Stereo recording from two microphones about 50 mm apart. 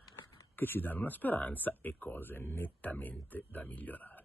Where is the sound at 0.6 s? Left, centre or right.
Left.